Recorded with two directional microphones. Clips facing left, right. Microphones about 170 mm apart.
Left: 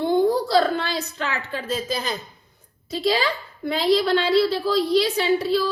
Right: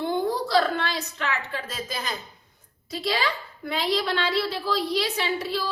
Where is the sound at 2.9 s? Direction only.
30° left (ahead or behind).